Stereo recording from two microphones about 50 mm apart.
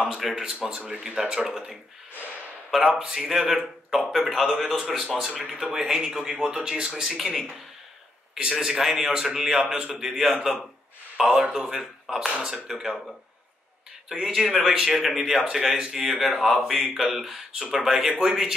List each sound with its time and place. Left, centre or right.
0.4 s speech: centre
2.9 s speech: centre
14.0 s speech: centre
16.1 s speech: centre